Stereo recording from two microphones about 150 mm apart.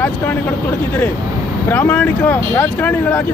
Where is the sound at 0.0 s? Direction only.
10° left (ahead or behind).